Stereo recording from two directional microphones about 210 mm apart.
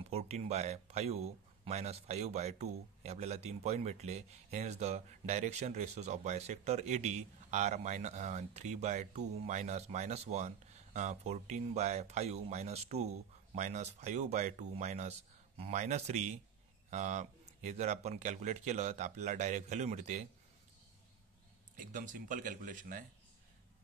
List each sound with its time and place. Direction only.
0.1 s speech: 30° right (ahead or behind)
21.7 s speech: 40° right (ahead or behind)